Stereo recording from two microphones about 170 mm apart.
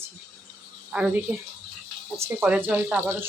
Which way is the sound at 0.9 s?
10° right (ahead or behind).